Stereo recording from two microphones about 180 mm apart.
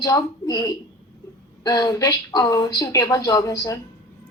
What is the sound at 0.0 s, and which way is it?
Speech, 20° left (ahead or behind).